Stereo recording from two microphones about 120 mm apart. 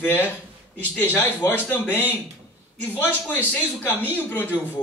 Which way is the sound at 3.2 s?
15° left (ahead or behind).